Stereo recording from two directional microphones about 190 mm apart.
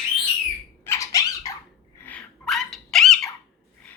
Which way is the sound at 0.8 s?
15° left (ahead or behind).